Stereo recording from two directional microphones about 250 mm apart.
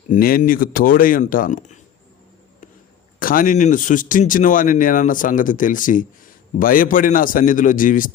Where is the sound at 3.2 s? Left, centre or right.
Left.